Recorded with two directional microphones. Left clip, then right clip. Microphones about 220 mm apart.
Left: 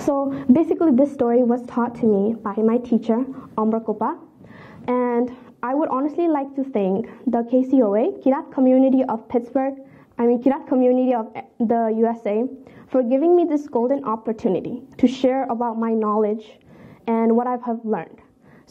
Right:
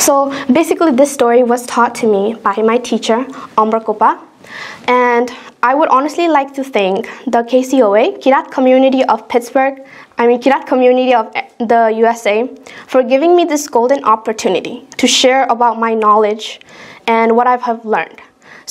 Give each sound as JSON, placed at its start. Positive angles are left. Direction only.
{"t": 0.0, "sound": "a woman's voice", "side_deg": -20}
{"t": 0.3, "sound": "a woman's voice", "side_deg": -10}
{"t": 1.7, "sound": "a woman's voice", "side_deg": -5}